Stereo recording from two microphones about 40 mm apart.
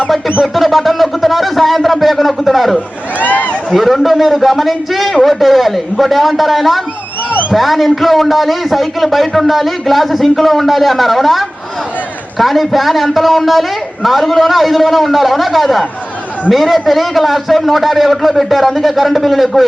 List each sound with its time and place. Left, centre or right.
0.4 s a man's voice: centre
3.2 s a man's voice: left
3.7 s a man's voice: centre